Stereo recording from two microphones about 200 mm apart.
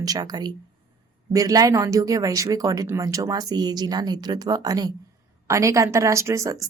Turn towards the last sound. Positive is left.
turn(degrees=-15)  # may be behind; listen again after turning